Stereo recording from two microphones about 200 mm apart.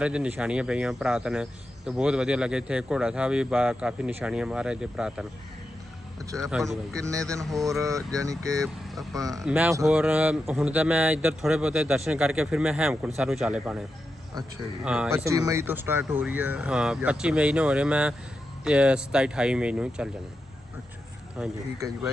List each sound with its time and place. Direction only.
0.0 s speech: 5° right (ahead or behind)
6.3 s speech: centre (ahead or behind)
7.6 s speech: 15° right (ahead or behind)
8.6 s speech: centre (ahead or behind)
14.8 s speech: 5° right (ahead or behind)
15.3 s speech: 15° right (ahead or behind)
21.4 s speech: 5° right (ahead or behind)
21.8 s speech: 15° right (ahead or behind)